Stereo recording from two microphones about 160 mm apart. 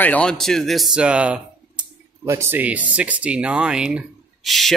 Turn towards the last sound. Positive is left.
turn(degrees=0)  # may be behind; listen again after turning